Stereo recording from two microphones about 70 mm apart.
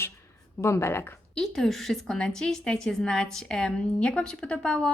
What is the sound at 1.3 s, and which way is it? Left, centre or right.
A woman's voice, centre.